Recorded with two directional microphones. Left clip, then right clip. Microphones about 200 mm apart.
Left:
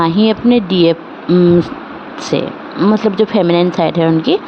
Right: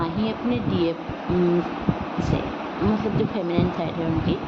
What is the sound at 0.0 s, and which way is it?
Speech, 55° left (ahead or behind).